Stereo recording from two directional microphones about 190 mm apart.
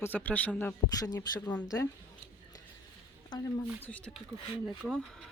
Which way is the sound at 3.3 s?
25° left (ahead or behind).